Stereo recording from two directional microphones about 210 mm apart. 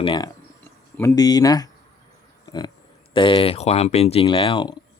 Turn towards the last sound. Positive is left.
turn(degrees=20)  # may be behind; listen again after turning